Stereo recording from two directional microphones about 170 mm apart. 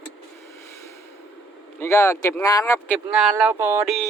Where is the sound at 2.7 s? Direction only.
10° left (ahead or behind).